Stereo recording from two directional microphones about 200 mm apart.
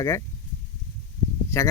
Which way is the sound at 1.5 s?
10° left (ahead or behind).